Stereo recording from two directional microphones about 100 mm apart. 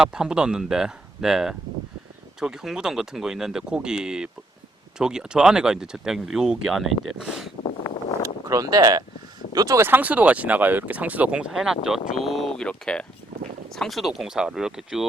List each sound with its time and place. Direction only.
0.0 s speech: 5° right (ahead or behind)
8.4 s speech: 35° right (ahead or behind)
9.8 s speech: 20° right (ahead or behind)